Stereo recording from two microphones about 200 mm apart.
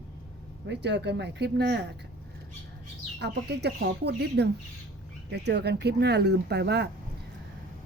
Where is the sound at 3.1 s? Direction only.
55° right (ahead or behind).